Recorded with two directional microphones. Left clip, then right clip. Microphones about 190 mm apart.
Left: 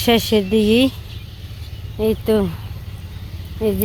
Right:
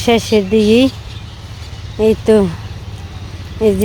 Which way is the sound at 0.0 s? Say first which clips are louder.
Right 3 dB; 5° left (ahead or behind).